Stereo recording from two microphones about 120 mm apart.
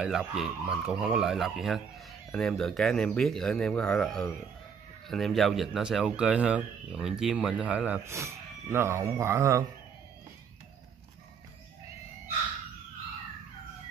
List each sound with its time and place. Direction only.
0.0 s speech: 5° right (ahead or behind)
8.0 s speech: 25° right (ahead or behind)